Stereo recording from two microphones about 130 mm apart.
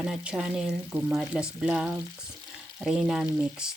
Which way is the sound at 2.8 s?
5° right (ahead or behind).